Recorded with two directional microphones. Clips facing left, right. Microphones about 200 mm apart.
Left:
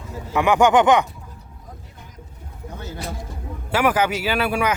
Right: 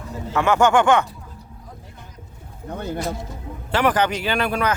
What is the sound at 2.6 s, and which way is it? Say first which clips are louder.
Speech: right 6 dB; 60° right (ahead or behind).